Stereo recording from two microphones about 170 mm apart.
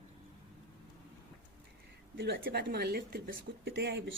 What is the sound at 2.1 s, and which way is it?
Speech, 65° right (ahead or behind).